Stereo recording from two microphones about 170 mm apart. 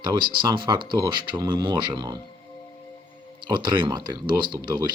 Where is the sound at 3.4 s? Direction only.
25° right (ahead or behind).